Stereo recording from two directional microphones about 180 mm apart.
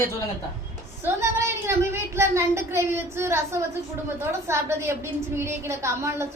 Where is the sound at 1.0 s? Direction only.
15° right (ahead or behind).